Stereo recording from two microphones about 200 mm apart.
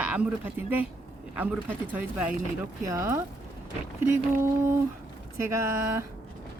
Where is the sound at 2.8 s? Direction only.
15° right (ahead or behind).